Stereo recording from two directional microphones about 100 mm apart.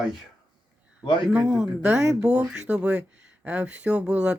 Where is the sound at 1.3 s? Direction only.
10° right (ahead or behind).